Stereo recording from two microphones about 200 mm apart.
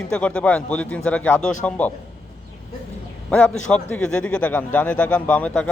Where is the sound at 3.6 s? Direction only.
5° left (ahead or behind).